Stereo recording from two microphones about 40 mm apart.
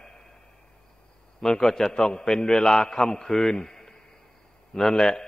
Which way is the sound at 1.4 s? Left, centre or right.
Centre.